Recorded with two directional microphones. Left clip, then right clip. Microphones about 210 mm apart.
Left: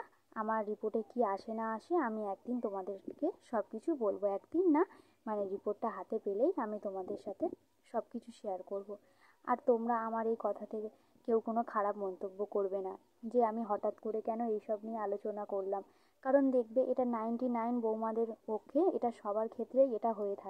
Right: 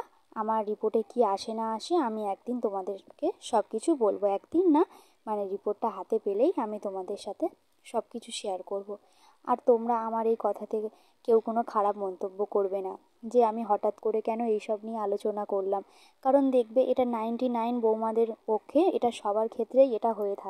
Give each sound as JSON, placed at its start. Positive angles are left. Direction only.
{"t": 0.0, "sound": "a woman's voice", "side_deg": -30}
{"t": 14.1, "sound": "speech", "side_deg": -55}
{"t": 16.2, "sound": "a woman's voice", "side_deg": -25}